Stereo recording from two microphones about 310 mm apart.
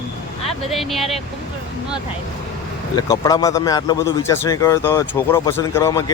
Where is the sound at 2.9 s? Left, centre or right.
Centre.